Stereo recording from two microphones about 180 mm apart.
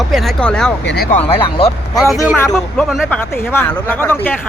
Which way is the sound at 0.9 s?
60° left (ahead or behind).